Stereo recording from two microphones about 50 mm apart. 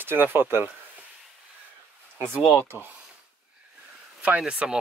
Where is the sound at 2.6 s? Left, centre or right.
Right.